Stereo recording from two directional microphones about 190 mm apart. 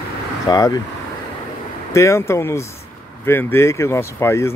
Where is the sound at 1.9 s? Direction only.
15° left (ahead or behind).